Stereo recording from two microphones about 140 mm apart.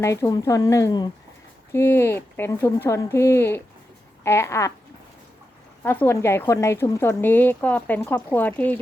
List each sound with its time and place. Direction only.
0.0 s speech: 20° left (ahead or behind)
1.7 s speech: 15° left (ahead or behind)
5.8 s speech: 15° left (ahead or behind)